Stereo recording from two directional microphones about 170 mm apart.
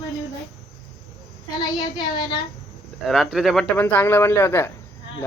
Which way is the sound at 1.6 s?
25° left (ahead or behind).